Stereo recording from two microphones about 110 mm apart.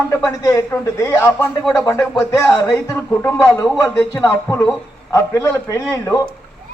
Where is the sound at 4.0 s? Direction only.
10° left (ahead or behind).